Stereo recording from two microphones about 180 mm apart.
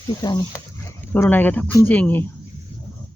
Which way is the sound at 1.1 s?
10° left (ahead or behind).